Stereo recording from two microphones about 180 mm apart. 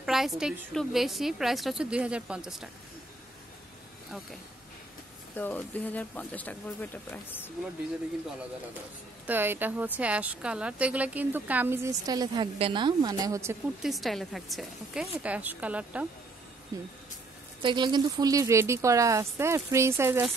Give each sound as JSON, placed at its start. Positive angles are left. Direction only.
{"t": 0.0, "sound": "a woman's voice", "side_deg": 0}
{"t": 5.3, "sound": "speech", "side_deg": 10}
{"t": 9.2, "sound": "a woman's voice", "side_deg": -10}
{"t": 13.8, "sound": "a woman's voice", "side_deg": 0}
{"t": 17.6, "sound": "a woman's voice", "side_deg": -25}